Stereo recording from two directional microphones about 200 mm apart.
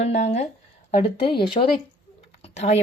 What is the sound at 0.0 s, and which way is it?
A woman's voice, 35° left (ahead or behind).